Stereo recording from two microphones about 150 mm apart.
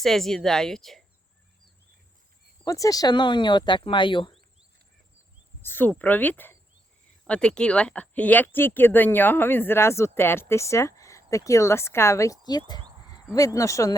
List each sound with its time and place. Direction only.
0.0 s a woman's voice: centre (ahead or behind)
2.6 s speech: 20° left (ahead or behind)
5.6 s speech: 15° left (ahead or behind)